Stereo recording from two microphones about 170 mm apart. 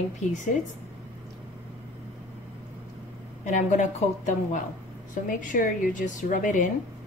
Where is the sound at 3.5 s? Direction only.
45° left (ahead or behind).